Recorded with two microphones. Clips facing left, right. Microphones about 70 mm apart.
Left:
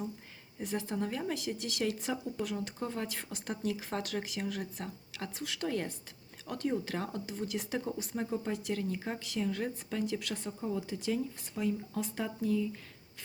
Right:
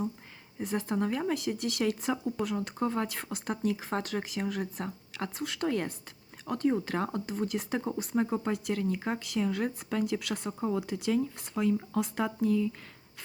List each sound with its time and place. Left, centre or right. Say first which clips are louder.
0.6 s a woman's voice: right 4 dB; right